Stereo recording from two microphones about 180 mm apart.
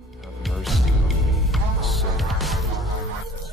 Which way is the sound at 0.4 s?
Centre (ahead or behind).